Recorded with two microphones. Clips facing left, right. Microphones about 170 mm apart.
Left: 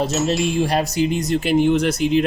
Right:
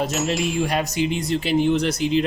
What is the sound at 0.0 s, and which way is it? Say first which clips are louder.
Speech: left 3 dB; 35° left (ahead or behind).